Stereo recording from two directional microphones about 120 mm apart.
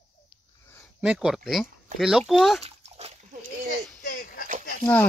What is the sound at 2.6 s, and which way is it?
Dog, 60° right (ahead or behind).